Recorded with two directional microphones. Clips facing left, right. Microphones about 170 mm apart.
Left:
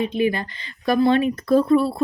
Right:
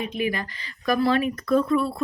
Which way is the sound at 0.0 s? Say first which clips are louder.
Left 6 dB; 30° left (ahead or behind).